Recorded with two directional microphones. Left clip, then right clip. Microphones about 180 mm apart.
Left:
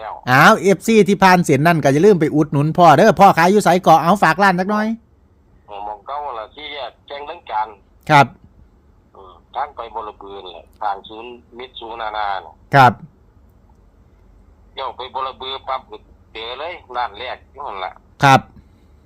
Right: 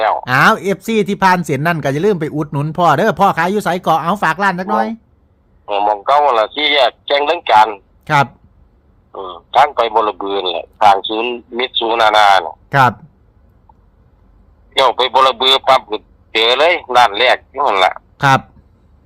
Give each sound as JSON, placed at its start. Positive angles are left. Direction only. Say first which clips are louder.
{"t": 0.3, "sound": "speech", "louder": "left 5 dB", "side_deg": 25}
{"t": 5.6, "sound": "speech", "louder": "right 15 dB", "side_deg": -70}
{"t": 8.0, "sound": "speech", "louder": "left 2 dB", "side_deg": 25}
{"t": 9.1, "sound": "speech", "louder": "right 14 dB", "side_deg": -65}
{"t": 12.6, "sound": "a sound", "louder": "left 3 dB", "side_deg": 25}
{"t": 14.8, "sound": "speech", "louder": "right 14 dB", "side_deg": -70}
{"t": 18.2, "sound": "speech", "louder": "left 1 dB", "side_deg": 25}